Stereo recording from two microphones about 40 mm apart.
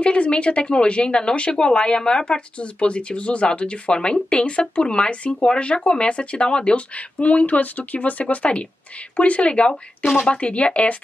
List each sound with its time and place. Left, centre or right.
0.0 s speech: left
9.5 s speech: left